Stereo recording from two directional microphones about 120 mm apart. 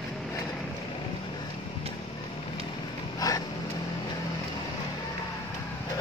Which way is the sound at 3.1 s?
30° left (ahead or behind).